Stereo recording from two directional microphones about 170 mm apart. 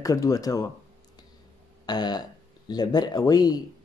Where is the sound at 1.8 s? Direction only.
25° left (ahead or behind).